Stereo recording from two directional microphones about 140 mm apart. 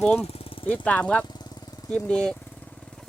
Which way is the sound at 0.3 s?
45° left (ahead or behind).